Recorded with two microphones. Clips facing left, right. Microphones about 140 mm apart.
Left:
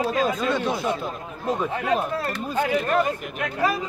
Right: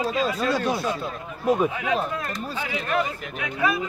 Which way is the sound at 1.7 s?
45° left (ahead or behind).